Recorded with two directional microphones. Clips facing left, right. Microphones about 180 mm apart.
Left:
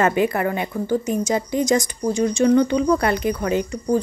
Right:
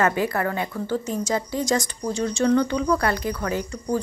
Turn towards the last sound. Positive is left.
turn(degrees=20)  # may be behind; listen again after turning